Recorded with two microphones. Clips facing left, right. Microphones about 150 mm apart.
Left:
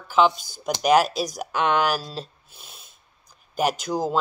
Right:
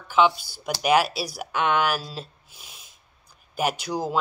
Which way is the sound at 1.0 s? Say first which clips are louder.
Left 4 dB; 5° right (ahead or behind).